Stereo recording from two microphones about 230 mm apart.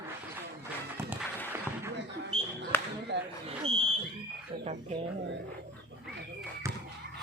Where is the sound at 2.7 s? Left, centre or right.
Centre.